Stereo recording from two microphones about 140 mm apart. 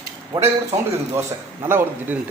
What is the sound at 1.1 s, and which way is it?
A man's voice, 15° right (ahead or behind).